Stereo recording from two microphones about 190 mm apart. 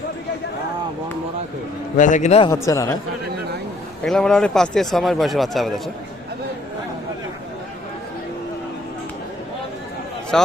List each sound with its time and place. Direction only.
2.0 s a man's voice: 40° left (ahead or behind)
2.4 s speech: 15° left (ahead or behind)
4.0 s speech: 5° left (ahead or behind)
10.3 s speech: centre (ahead or behind)